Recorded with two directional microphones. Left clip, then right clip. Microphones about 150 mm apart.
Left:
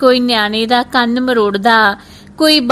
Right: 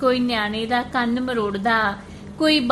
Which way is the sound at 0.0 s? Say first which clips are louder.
Left 9 dB; 55° left (ahead or behind).